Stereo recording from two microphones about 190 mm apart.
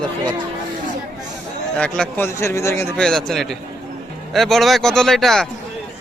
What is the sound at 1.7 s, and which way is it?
A man's voice, 5° left (ahead or behind).